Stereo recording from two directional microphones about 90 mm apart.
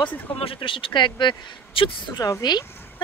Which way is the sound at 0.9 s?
60° left (ahead or behind).